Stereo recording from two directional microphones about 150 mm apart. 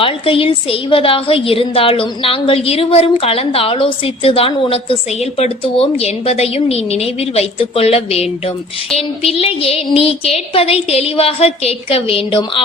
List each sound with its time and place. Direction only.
0.0 s a woman's voice: 35° left (ahead or behind)